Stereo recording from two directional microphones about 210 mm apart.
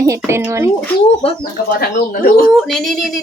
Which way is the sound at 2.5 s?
Centre (ahead or behind).